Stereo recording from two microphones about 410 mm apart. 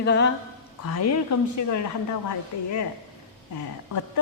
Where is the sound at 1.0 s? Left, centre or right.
Left.